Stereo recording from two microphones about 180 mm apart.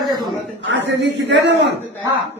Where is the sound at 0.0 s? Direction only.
25° right (ahead or behind).